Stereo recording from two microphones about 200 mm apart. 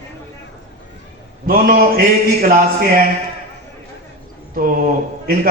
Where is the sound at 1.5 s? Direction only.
45° right (ahead or behind).